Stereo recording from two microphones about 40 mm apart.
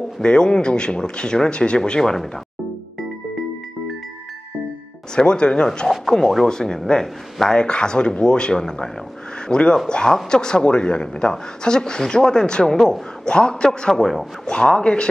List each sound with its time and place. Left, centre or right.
0.0 s speech: left
5.1 s speech: centre
5.9 s speech: centre